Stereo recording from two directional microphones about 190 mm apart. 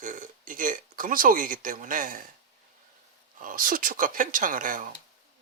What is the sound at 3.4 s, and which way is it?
Speech, 45° right (ahead or behind).